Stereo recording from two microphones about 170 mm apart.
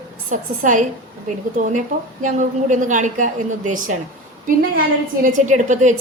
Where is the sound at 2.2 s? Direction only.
45° right (ahead or behind).